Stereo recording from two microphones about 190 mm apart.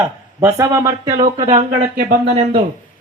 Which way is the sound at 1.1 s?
35° right (ahead or behind).